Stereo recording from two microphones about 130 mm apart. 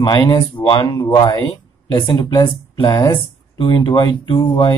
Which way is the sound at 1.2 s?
20° left (ahead or behind).